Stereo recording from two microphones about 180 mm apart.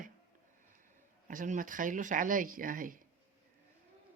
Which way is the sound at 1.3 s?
45° right (ahead or behind).